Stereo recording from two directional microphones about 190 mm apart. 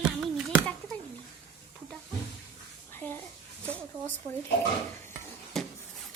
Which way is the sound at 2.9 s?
10° left (ahead or behind).